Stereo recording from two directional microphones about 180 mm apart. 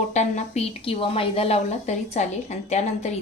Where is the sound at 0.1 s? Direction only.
40° left (ahead or behind).